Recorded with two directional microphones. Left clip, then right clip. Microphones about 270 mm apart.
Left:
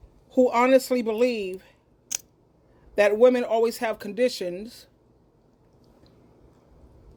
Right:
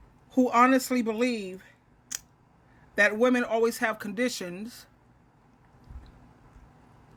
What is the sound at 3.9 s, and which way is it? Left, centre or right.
Speech, centre.